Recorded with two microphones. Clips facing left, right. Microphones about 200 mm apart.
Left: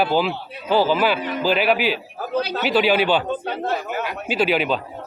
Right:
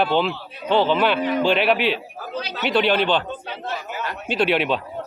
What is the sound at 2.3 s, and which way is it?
Speech, 55° left (ahead or behind).